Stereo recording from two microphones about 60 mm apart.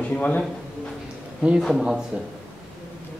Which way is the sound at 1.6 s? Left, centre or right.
Centre.